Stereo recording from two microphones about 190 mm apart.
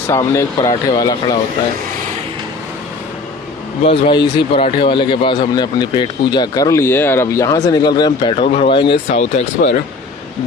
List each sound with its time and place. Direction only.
0.1 s speech: 15° left (ahead or behind)
3.8 s speech: 25° left (ahead or behind)
9.0 s speech: 40° left (ahead or behind)